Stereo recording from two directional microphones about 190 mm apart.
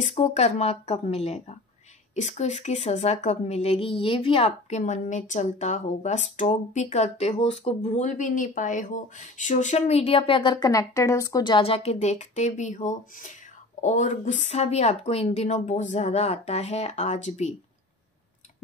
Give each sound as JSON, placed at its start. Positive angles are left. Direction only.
{"t": 0.1, "sound": "a woman's voice", "side_deg": 35}